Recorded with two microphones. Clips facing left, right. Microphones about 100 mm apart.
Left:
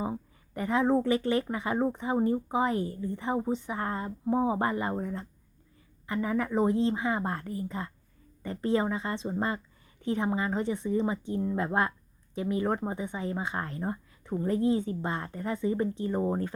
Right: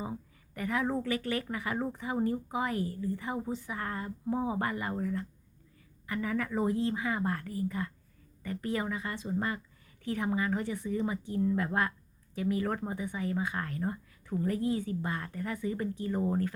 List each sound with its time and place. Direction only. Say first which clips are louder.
0.0 s speech: left 5 dB; 25° left (ahead or behind)